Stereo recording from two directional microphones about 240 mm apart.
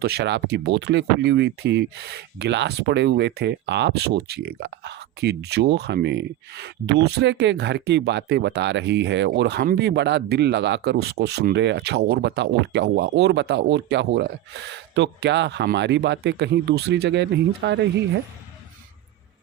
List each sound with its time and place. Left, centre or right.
0.0 s speech: right